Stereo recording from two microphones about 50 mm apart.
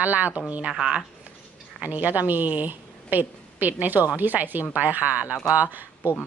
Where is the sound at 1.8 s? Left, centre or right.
Right.